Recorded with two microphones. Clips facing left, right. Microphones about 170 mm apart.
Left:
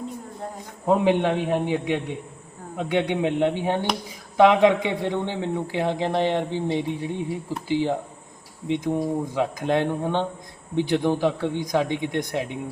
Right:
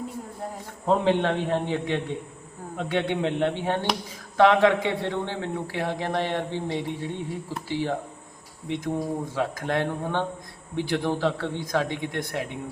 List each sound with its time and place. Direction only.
0.9 s a man's voice: 15° left (ahead or behind)